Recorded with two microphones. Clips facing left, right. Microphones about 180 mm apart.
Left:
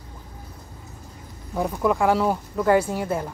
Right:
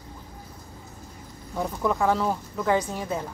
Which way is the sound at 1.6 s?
10° left (ahead or behind).